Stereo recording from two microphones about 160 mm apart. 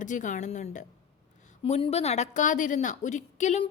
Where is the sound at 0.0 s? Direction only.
50° left (ahead or behind).